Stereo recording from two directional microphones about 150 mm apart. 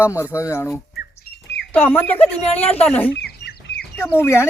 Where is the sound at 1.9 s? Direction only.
15° left (ahead or behind).